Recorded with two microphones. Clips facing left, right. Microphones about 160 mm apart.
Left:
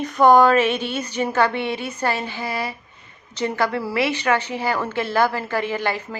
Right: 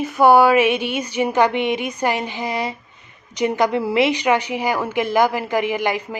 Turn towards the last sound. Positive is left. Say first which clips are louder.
# right 3 dB
turn(degrees=-15)  # may be behind; listen again after turning